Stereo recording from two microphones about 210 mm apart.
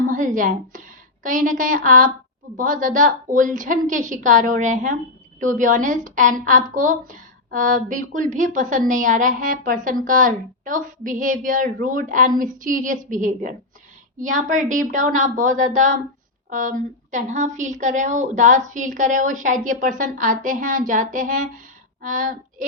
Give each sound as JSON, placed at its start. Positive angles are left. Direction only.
{"t": 0.0, "sound": "a woman's voice", "side_deg": -40}